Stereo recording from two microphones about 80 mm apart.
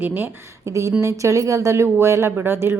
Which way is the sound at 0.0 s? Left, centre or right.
Right.